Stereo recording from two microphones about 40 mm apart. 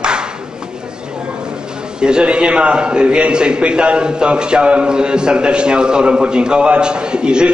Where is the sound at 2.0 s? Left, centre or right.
Right.